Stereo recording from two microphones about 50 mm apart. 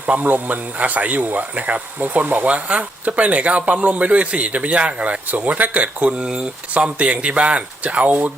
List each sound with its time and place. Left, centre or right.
0.0 s speech: right